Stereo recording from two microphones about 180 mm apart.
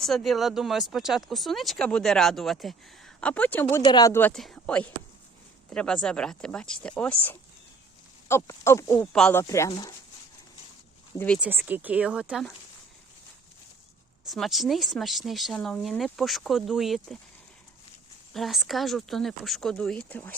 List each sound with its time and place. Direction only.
0.0 s speech: centre (ahead or behind)
9.4 s speech: 15° left (ahead or behind)
11.3 s speech: 5° right (ahead or behind)
14.3 s speech: centre (ahead or behind)
18.3 s speech: centre (ahead or behind)